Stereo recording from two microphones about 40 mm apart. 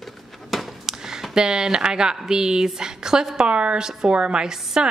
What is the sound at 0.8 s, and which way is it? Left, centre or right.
Speech, centre.